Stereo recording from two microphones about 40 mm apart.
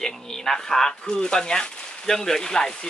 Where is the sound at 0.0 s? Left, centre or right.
Centre.